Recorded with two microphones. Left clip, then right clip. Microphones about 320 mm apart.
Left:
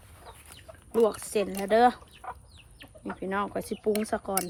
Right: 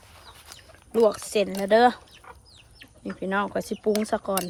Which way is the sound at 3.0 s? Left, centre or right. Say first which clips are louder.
Right 4 dB; right.